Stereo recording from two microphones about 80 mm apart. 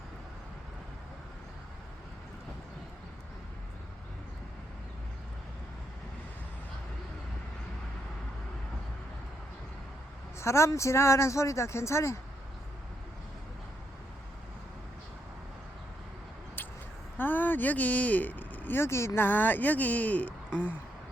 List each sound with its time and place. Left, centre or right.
10.4 s speech: left
16.6 s a sound: left
17.2 s speech: left